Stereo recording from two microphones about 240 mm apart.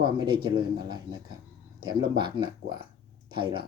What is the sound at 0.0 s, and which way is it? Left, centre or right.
Speech, centre.